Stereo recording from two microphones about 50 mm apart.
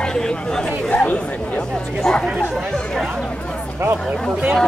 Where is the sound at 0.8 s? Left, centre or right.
Left.